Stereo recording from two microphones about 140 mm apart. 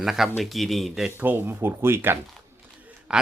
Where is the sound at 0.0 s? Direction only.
Centre (ahead or behind).